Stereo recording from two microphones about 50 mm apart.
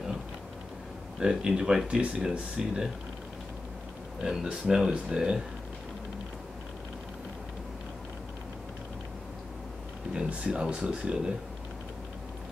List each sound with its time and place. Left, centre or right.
1.2 s speech: centre
4.2 s speech: centre
10.1 s speech: right